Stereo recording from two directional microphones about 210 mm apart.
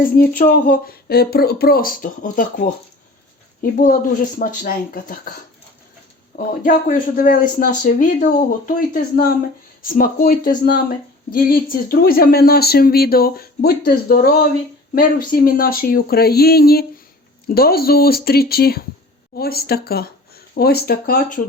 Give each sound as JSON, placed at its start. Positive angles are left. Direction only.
{"t": 0.0, "sound": "speech", "side_deg": 40}
{"t": 6.3, "sound": "speech", "side_deg": 40}